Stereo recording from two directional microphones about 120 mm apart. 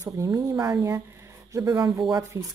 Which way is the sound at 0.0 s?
30° right (ahead or behind).